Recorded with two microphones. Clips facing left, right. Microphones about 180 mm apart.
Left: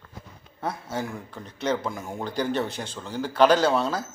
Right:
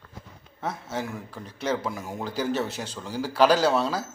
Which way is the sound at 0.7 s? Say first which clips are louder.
Left 1 dB; centre (ahead or behind).